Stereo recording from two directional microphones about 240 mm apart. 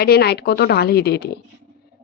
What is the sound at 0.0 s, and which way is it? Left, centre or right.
A woman's voice, left.